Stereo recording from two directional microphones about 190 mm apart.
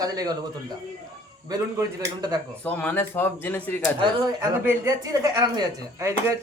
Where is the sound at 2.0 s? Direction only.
20° right (ahead or behind).